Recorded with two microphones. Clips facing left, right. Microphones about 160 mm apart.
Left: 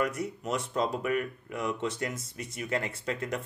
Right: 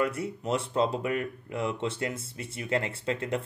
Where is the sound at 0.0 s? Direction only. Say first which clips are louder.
Right 2 dB; 30° right (ahead or behind).